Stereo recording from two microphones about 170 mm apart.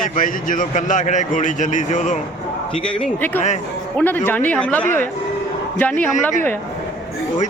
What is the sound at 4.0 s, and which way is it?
Speech, 10° left (ahead or behind).